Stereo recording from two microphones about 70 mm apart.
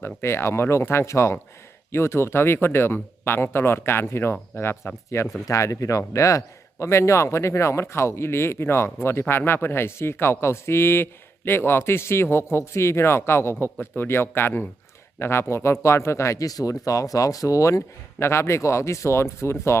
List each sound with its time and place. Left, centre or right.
0.0 s a man's voice: left